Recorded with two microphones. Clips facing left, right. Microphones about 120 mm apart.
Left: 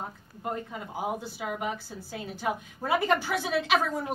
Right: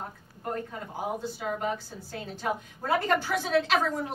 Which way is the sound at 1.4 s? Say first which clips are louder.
Right 3 dB; 10° left (ahead or behind).